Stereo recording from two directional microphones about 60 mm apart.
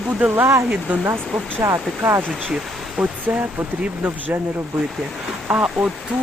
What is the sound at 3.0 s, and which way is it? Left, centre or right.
Speech, right.